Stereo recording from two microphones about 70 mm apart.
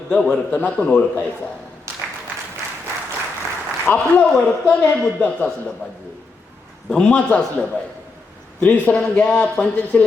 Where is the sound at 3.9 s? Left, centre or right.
Left.